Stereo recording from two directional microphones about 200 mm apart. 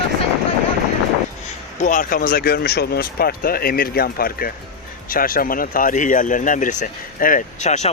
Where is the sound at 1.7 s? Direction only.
40° left (ahead or behind).